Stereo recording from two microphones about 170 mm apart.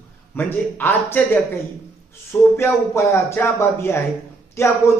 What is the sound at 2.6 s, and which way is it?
Speech, 15° left (ahead or behind).